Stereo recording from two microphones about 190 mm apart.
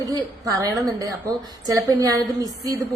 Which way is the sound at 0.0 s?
20° right (ahead or behind).